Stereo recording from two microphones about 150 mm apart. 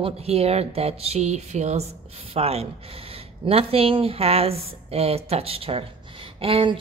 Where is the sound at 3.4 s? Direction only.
40° right (ahead or behind).